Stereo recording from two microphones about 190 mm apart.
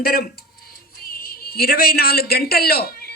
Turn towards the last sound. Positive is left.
turn(degrees=55)  # may be behind; listen again after turning